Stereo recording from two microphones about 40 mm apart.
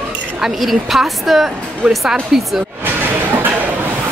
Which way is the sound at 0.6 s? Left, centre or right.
Centre.